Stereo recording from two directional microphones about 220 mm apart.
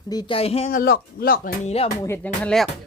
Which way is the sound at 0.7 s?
45° left (ahead or behind).